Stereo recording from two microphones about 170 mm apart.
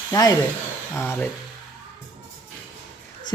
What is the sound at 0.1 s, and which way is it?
A man's voice, 20° left (ahead or behind).